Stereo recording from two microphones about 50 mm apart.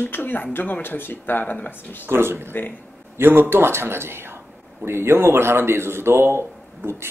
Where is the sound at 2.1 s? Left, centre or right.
Right.